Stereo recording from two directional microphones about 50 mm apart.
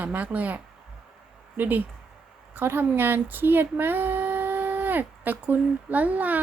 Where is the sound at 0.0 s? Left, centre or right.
Right.